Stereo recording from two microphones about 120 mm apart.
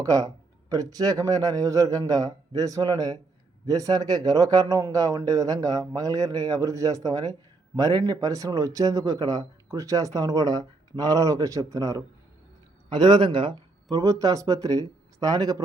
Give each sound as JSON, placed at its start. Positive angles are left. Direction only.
{"t": 0.0, "sound": "a man's voice", "side_deg": -30}
{"t": 13.9, "sound": "speech", "side_deg": -25}